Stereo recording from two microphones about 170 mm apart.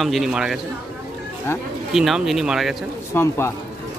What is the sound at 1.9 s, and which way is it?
Speech, centre (ahead or behind).